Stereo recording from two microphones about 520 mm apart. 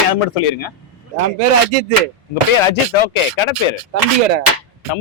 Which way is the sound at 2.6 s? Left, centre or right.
Left.